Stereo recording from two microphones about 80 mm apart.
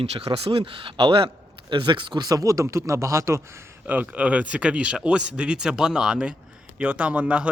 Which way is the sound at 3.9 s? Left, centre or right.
Centre.